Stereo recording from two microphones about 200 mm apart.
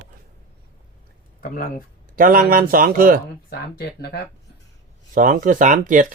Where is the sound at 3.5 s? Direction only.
55° left (ahead or behind).